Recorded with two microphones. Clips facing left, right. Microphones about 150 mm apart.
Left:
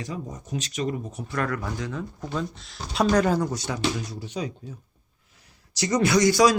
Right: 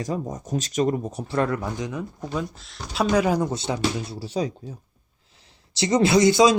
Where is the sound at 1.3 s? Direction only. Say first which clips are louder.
Right 4 dB; 25° right (ahead or behind); by 3.4 s 10° right (ahead or behind).